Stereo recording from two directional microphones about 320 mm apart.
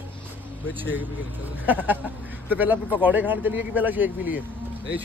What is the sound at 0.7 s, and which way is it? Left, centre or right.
Speech, centre.